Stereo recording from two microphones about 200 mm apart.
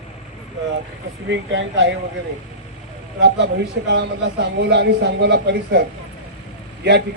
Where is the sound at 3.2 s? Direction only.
55° right (ahead or behind).